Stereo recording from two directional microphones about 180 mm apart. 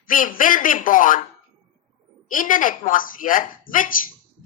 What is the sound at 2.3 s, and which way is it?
A woman's voice, 50° left (ahead or behind).